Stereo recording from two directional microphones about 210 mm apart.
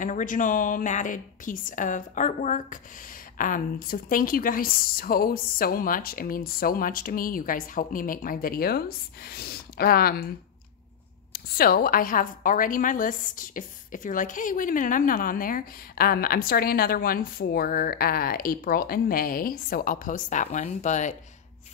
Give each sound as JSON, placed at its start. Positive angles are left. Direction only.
{"t": 0.0, "sound": "a woman's voice", "side_deg": 40}
{"t": 11.3, "sound": "a woman's voice", "side_deg": 45}